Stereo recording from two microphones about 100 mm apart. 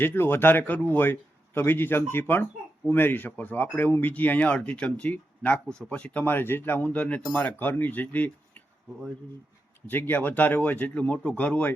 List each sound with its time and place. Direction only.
0.0 s a man's voice: 20° left (ahead or behind)
9.8 s speech: 20° left (ahead or behind)